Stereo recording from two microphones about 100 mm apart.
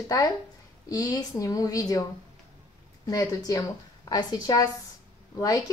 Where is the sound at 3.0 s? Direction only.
35° left (ahead or behind).